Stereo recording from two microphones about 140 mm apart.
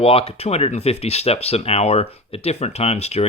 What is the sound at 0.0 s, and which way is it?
Speech, 45° left (ahead or behind).